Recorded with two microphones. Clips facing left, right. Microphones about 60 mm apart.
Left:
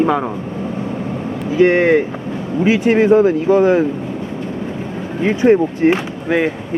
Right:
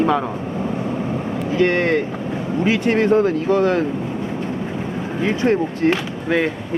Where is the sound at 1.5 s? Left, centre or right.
Centre.